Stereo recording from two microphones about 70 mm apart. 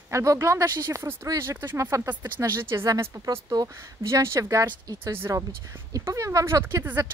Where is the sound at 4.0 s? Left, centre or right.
Right.